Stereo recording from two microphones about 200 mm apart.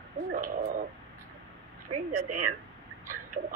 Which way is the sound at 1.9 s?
35° right (ahead or behind).